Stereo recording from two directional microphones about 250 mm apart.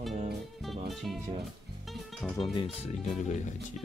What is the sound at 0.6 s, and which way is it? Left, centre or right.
Music, centre.